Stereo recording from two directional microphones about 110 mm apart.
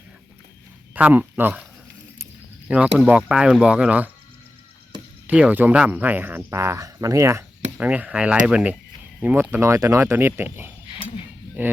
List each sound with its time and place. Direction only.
0.9 s speech: 15° right (ahead or behind)
2.6 s speech: 10° right (ahead or behind)
5.2 s speech: 10° right (ahead or behind)
7.8 s speech: 15° right (ahead or behind)